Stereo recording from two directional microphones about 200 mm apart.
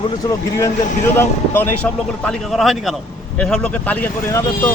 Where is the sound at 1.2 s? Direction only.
10° left (ahead or behind).